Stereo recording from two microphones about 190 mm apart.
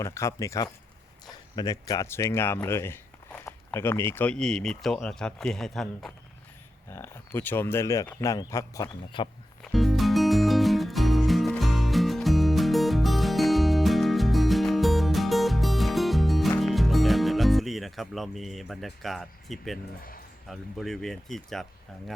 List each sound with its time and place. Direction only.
0.0 s speech: 15° left (ahead or behind)
6.9 s speech: 15° left (ahead or behind)
9.7 s music: centre (ahead or behind)
20.5 s speech: centre (ahead or behind)